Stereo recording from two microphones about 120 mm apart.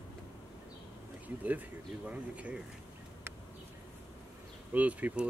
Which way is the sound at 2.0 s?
10° right (ahead or behind).